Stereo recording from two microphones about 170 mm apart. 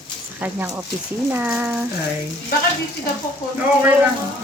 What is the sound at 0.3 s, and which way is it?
Speech, 10° right (ahead or behind).